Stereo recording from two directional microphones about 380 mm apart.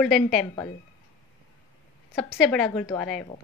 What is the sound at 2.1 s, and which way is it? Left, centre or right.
A woman's voice, centre.